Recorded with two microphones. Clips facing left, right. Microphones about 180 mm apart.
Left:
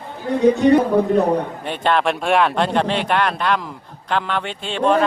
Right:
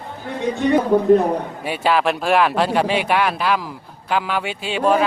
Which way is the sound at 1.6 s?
5° right (ahead or behind).